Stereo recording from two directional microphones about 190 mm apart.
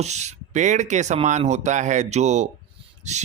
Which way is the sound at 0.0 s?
35° right (ahead or behind).